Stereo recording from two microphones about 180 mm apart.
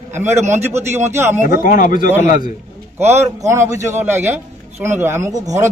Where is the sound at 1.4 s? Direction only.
50° left (ahead or behind).